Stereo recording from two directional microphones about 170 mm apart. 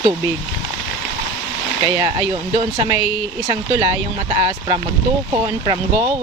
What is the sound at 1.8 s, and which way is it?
Speech, 25° right (ahead or behind).